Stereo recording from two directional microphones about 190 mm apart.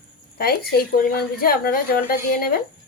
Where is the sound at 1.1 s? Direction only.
50° left (ahead or behind).